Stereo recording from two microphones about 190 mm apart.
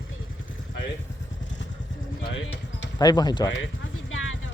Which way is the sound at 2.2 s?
85° left.